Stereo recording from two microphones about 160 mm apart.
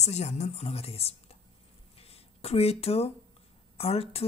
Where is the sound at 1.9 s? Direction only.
40° left (ahead or behind).